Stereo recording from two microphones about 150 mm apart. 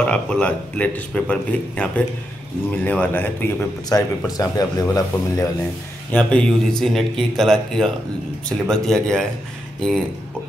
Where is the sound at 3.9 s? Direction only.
25° left (ahead or behind).